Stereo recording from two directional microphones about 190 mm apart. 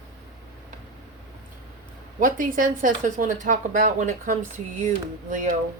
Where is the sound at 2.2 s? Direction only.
45° right (ahead or behind).